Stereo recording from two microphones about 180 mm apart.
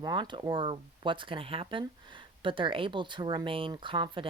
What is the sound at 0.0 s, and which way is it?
Speech, 25° right (ahead or behind).